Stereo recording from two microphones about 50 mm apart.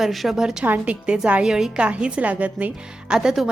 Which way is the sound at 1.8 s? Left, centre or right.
Right.